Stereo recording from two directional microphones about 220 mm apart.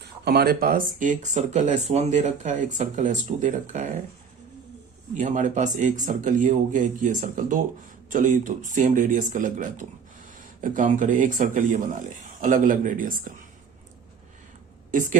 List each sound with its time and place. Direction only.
0.0 s speech: 45° right (ahead or behind)
5.1 s speech: 35° right (ahead or behind)
14.9 s speech: 35° right (ahead or behind)